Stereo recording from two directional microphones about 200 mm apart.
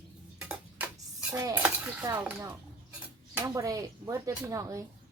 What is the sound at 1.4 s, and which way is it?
Speech, 10° right (ahead or behind).